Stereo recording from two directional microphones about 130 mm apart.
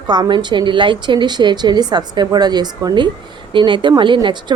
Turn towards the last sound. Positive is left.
turn(degrees=-35)  # may be behind; listen again after turning